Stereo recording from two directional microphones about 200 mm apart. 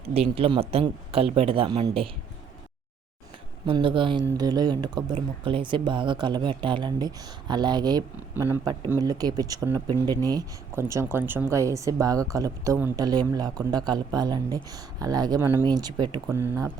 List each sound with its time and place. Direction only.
0.0 s speech: 30° right (ahead or behind)
3.7 s speech: 25° right (ahead or behind)